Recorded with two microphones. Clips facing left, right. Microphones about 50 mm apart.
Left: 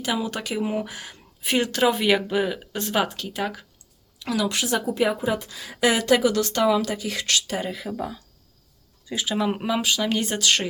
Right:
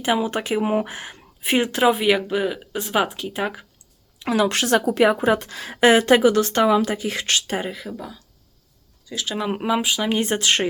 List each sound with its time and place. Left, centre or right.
0.0 s speech: right
4.2 s a woman's voice: right
4.4 s a woman's voice: right
7.7 s speech: centre
7.9 s speech: centre
9.2 s speech: centre
10.2 s speech: right